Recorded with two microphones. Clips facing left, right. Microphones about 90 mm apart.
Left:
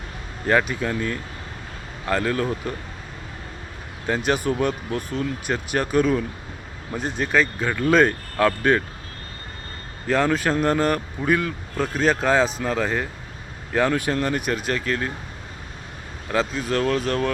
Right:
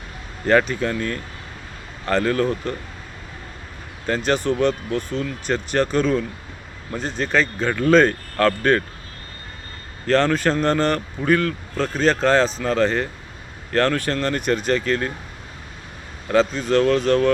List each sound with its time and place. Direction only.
0.4 s speech: 5° left (ahead or behind)
4.0 s speech: 10° left (ahead or behind)
10.1 s speech: 10° left (ahead or behind)
16.3 s speech: 5° left (ahead or behind)